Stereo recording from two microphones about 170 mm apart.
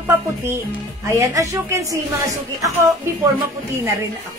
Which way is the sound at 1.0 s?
20° right (ahead or behind).